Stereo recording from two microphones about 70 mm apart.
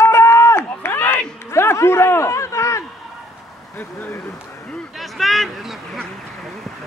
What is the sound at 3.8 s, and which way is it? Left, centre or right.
Speech, left.